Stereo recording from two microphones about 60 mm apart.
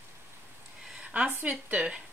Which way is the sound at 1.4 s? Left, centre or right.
Right.